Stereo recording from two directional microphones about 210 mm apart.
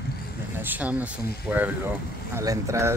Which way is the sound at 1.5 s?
5° right (ahead or behind).